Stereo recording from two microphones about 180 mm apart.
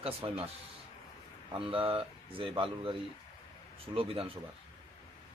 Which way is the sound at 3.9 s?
30° right (ahead or behind).